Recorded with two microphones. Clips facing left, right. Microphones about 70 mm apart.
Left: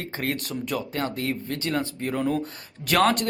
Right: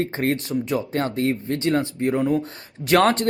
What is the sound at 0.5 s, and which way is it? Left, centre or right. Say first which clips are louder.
Speech: right 5 dB; right.